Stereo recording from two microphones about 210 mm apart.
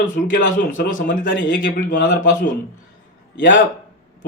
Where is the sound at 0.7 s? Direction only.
40° left (ahead or behind).